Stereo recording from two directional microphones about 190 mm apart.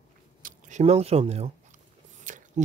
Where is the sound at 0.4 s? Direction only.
45° right (ahead or behind).